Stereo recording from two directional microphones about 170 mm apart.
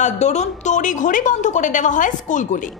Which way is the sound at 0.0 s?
45° left (ahead or behind).